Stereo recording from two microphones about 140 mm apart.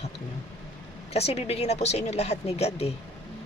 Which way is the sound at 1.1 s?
45° left (ahead or behind).